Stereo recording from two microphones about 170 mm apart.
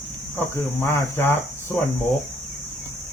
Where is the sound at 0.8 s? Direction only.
15° left (ahead or behind).